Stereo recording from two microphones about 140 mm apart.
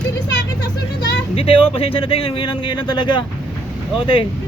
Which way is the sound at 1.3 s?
40° left (ahead or behind).